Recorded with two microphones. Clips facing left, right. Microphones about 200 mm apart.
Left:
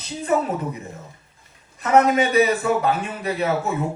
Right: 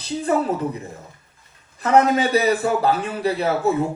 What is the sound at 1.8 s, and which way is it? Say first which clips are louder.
Speech: even; 35° right (ahead or behind).